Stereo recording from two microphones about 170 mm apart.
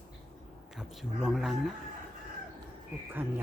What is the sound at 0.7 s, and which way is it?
Speech, centre (ahead or behind).